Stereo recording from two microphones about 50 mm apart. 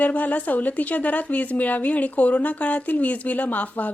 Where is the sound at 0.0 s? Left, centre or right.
Left.